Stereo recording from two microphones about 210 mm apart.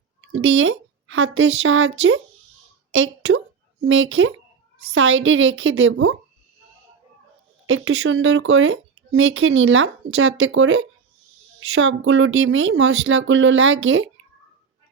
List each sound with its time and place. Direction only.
0.3 s speech: 70° right (ahead or behind)
7.7 s speech: 80° right